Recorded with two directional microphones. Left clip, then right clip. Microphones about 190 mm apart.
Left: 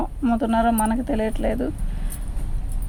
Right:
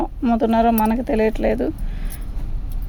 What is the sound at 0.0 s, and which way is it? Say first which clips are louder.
Speech: right 4 dB; 45° right (ahead or behind).